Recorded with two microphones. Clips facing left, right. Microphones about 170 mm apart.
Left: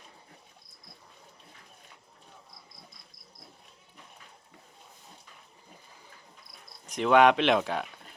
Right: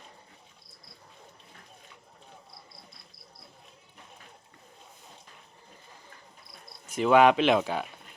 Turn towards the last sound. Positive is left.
turn(degrees=0)  # may be behind; listen again after turning